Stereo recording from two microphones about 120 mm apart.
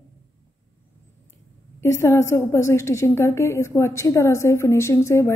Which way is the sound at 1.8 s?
20° left (ahead or behind).